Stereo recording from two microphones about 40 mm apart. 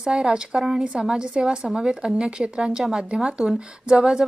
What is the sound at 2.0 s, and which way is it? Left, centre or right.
A woman's voice, centre.